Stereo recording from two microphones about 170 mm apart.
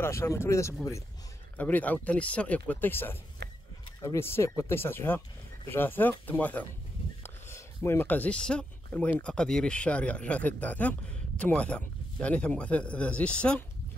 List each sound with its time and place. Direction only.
0.0 s speech: 15° left (ahead or behind)
3.4 s a sound: 85° right
4.0 s speech: 15° left (ahead or behind)